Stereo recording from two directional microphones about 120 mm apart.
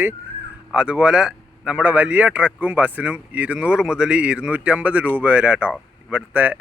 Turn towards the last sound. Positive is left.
turn(degrees=-15)  # may be behind; listen again after turning